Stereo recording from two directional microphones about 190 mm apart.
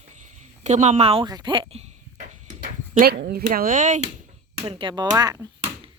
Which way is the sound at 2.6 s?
55° right (ahead or behind).